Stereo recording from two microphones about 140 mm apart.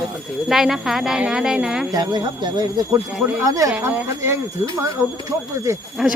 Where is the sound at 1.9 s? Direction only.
30° right (ahead or behind).